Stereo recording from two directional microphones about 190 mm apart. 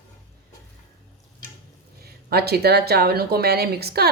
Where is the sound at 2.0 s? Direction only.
55° right (ahead or behind).